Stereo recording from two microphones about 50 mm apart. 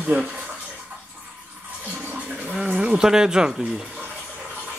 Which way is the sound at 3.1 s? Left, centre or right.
Centre.